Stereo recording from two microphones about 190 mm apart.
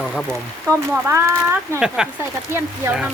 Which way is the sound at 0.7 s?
15° right (ahead or behind).